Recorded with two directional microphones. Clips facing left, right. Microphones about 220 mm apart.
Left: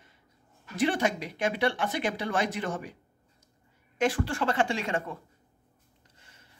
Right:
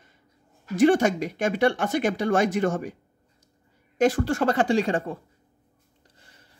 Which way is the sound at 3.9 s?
40° right (ahead or behind).